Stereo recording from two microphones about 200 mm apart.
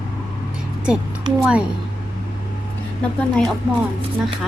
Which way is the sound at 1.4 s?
5° right (ahead or behind).